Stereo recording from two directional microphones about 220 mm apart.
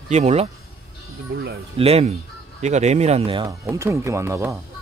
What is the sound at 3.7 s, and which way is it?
Speech, 15° right (ahead or behind).